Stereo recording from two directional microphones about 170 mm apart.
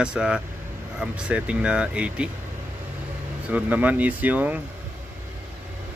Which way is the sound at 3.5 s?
10° right (ahead or behind).